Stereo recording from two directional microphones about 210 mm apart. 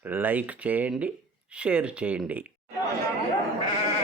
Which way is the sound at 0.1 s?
10° right (ahead or behind).